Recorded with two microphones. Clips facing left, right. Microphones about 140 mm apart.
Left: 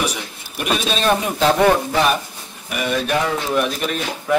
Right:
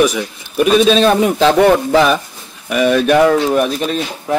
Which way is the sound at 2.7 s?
90° right.